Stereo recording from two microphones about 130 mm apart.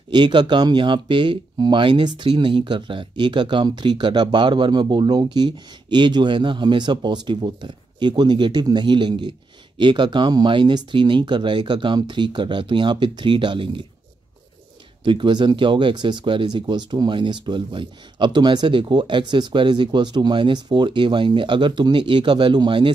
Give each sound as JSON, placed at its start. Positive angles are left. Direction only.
{"t": 0.1, "sound": "speech", "side_deg": -35}
{"t": 15.0, "sound": "speech", "side_deg": -40}